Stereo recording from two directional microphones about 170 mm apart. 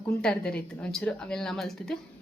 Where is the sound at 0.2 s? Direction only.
5° left (ahead or behind).